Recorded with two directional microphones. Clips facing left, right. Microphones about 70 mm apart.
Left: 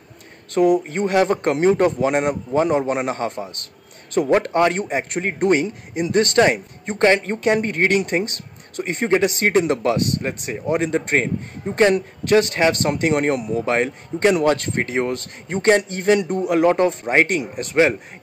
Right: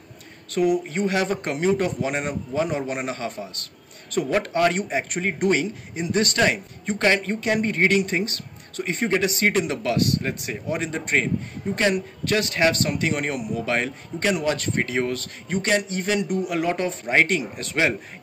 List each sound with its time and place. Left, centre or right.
0.6 s speech: left